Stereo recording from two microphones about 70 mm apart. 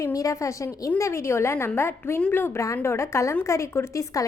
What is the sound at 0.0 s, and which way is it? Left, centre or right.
A woman's voice, left.